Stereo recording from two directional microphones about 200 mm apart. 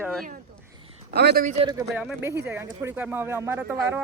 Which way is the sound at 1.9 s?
10° right (ahead or behind).